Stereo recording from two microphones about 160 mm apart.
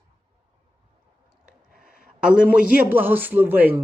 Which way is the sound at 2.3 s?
10° right (ahead or behind).